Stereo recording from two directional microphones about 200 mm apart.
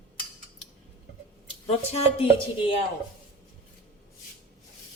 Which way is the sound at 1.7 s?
30° left (ahead or behind).